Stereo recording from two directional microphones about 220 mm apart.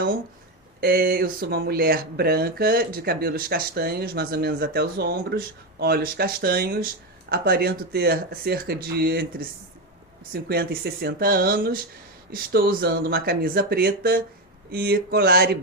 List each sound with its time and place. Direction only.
0.8 s speech: 45° right (ahead or behind)